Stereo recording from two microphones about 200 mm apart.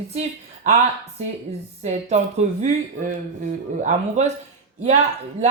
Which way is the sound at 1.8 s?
35° right (ahead or behind).